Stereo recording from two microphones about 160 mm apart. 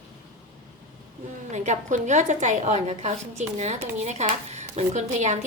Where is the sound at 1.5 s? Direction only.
45° right (ahead or behind).